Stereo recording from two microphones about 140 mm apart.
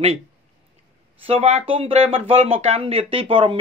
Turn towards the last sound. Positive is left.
turn(degrees=-40)  # may be behind; listen again after turning